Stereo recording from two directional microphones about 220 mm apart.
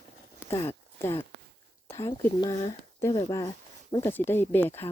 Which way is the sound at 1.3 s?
50° right (ahead or behind).